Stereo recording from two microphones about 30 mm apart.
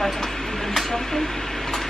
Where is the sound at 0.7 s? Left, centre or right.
Centre.